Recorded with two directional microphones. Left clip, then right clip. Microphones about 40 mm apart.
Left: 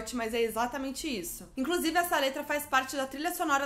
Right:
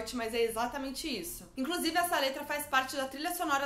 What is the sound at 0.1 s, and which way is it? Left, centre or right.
A woman's voice, left.